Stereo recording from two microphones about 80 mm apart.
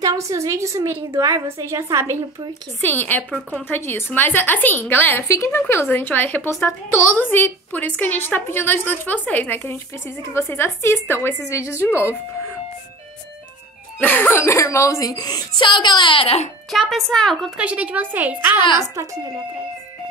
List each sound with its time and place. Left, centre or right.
0.0 s a woman's voice: right
2.8 s a woman's voice: left
10.2 s a woman's voice: left
13.9 s a woman's voice: left
14.4 s a woman's voice: left
16.9 s speech: centre
17.6 s a woman's voice: centre
18.6 s speech: left